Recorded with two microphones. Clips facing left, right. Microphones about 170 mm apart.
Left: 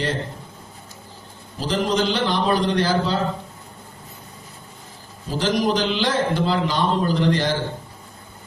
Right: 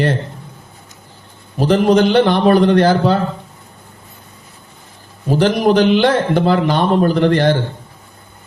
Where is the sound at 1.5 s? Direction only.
60° right (ahead or behind).